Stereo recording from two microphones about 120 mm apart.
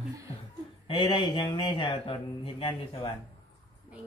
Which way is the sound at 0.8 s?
45° left (ahead or behind).